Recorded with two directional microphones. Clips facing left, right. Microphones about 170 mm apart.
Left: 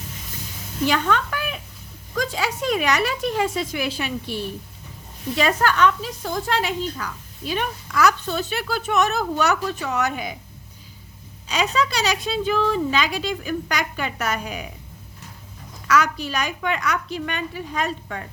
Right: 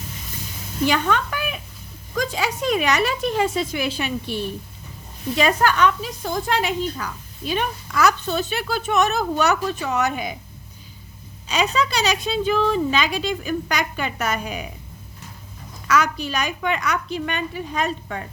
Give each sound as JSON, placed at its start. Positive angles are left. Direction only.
{"t": 0.9, "sound": "speech", "side_deg": -15}
{"t": 11.4, "sound": "speech", "side_deg": -20}
{"t": 15.9, "sound": "speech", "side_deg": -20}